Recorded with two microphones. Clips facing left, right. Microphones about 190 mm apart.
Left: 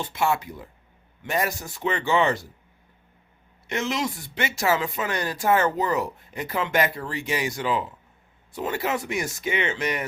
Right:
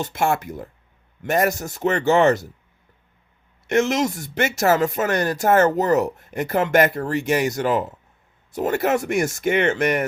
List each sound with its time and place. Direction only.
0.0 s speech: 45° right (ahead or behind)
3.7 s speech: 45° right (ahead or behind)